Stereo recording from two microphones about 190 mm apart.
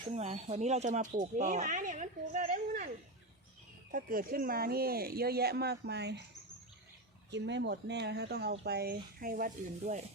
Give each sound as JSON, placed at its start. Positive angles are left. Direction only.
{"t": 0.1, "sound": "speech", "side_deg": -35}
{"t": 3.9, "sound": "speech", "side_deg": -50}
{"t": 7.3, "sound": "speech", "side_deg": -65}